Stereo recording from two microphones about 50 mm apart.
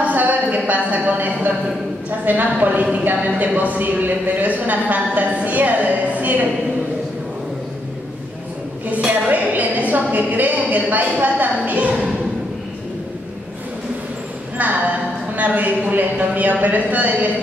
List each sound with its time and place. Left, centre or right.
0.0 s a sound: right
2.0 s speech: right
8.9 s speech: right
14.6 s speech: right